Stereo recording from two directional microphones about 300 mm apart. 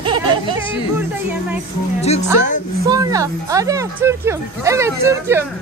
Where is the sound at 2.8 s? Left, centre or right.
Centre.